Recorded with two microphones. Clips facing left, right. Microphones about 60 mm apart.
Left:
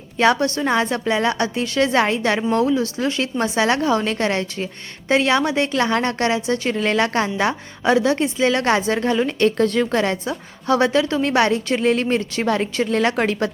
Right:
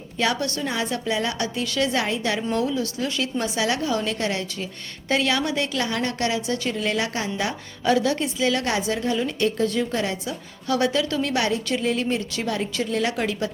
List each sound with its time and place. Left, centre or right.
0.2 s a woman's voice: left
7.9 s a woman's voice: left
8.9 s a woman's voice: left
10.2 s a woman's voice: left